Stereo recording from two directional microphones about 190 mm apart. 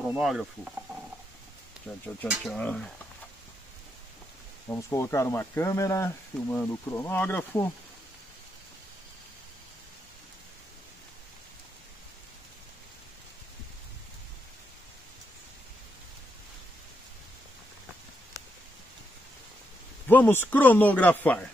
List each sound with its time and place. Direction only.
0.0 s speech: centre (ahead or behind)
2.2 s speech: 5° right (ahead or behind)
2.5 s speech: 5° left (ahead or behind)
4.6 s speech: 15° left (ahead or behind)
20.1 s speech: 10° left (ahead or behind)